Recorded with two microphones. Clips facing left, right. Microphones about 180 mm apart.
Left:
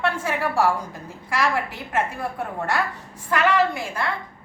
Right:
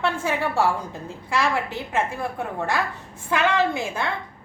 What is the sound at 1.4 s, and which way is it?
Speech, 25° right (ahead or behind).